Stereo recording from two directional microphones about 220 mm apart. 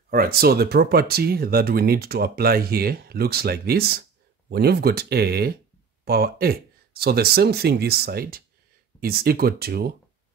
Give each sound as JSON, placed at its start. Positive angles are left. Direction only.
{"t": 0.1, "sound": "speech", "side_deg": -40}